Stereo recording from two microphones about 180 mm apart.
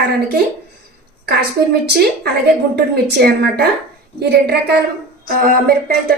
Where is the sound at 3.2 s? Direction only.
65° right (ahead or behind).